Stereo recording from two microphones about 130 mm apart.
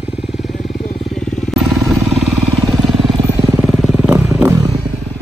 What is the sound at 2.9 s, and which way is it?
Vehicle, centre (ahead or behind).